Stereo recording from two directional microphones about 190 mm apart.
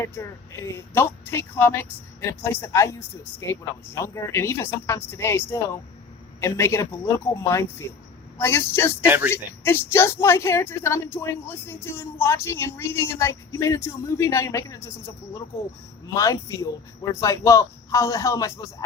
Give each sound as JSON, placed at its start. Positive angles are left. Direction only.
{"t": 0.0, "sound": "a woman's voice", "side_deg": 15}
{"t": 8.4, "sound": "a woman's voice", "side_deg": 15}
{"t": 9.0, "sound": "speech", "side_deg": -10}
{"t": 9.3, "sound": "a woman's voice", "side_deg": 10}